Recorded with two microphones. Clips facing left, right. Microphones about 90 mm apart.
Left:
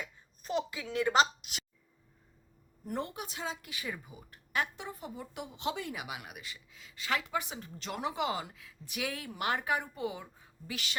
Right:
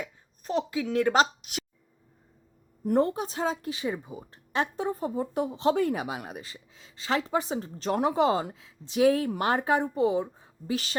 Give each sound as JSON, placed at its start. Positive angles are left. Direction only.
{"t": 0.8, "sound": "speech", "side_deg": -50}
{"t": 2.8, "sound": "a woman's voice", "side_deg": -40}